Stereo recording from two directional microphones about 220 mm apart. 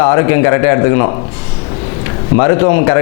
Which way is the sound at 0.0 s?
20° left (ahead or behind).